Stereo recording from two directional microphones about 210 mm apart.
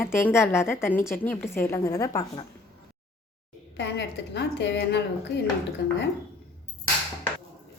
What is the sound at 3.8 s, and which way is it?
A woman's voice, 55° left (ahead or behind).